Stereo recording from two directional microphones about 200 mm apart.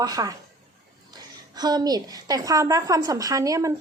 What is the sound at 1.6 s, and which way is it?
A woman's voice, 20° right (ahead or behind).